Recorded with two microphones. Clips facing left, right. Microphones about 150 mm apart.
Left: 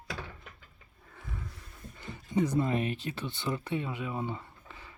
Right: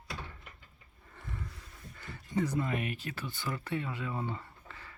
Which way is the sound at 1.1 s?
5° left (ahead or behind).